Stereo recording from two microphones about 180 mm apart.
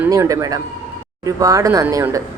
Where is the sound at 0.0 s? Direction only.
15° right (ahead or behind).